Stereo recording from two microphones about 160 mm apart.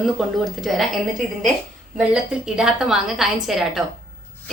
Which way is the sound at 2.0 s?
5° right (ahead or behind).